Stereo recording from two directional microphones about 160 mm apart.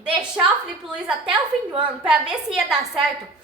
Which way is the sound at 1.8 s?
10° right (ahead or behind).